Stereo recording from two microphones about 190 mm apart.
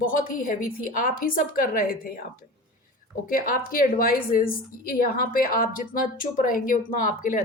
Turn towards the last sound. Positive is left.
turn(degrees=45)  # may be behind; listen again after turning